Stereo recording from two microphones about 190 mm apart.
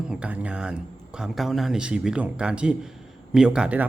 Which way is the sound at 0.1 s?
5° right (ahead or behind).